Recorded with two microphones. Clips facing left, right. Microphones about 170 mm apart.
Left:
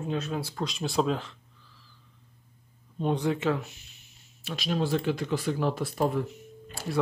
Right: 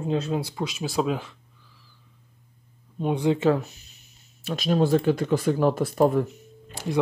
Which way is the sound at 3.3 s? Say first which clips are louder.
Right 6 dB; 35° right (ahead or behind).